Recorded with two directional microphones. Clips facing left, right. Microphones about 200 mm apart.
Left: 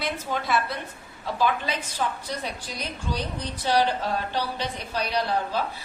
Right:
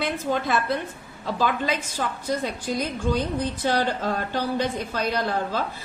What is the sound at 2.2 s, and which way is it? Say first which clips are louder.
A woman's voice: right 7 dB; 50° right (ahead or behind).